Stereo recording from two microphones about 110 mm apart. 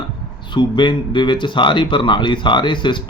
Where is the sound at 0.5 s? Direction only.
45° left (ahead or behind).